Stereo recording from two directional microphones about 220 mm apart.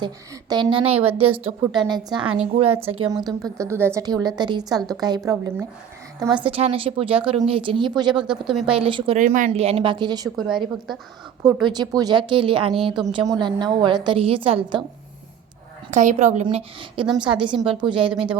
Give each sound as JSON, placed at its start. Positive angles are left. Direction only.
{"t": 0.0, "sound": "a woman's voice", "side_deg": -20}
{"t": 8.2, "sound": "a woman's voice", "side_deg": 0}
{"t": 8.7, "sound": "speech", "side_deg": -25}
{"t": 9.1, "sound": "speech", "side_deg": -35}
{"t": 11.4, "sound": "speech", "side_deg": -15}
{"t": 15.9, "sound": "speech", "side_deg": -35}